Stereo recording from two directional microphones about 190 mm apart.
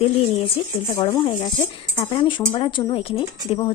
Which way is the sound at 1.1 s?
25° left (ahead or behind).